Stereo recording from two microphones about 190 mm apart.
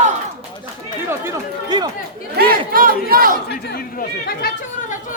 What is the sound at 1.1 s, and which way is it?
Speech, 15° right (ahead or behind).